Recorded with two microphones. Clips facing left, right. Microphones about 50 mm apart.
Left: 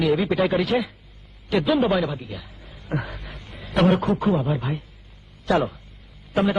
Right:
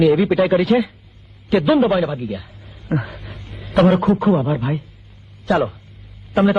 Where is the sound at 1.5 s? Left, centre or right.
Centre.